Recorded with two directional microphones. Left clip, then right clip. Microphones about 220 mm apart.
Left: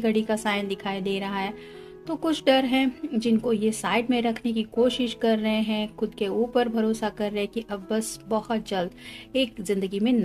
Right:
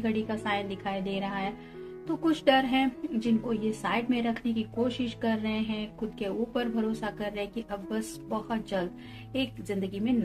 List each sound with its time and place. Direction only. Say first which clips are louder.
0.0 s a woman's voice: left 7 dB; 55° left (ahead or behind)